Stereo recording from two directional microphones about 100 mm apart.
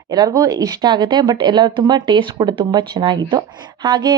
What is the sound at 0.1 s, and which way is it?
A woman's voice, 40° right (ahead or behind).